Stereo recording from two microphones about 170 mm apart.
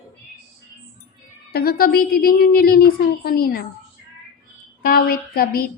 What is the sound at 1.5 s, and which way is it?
A woman's voice, 70° left (ahead or behind).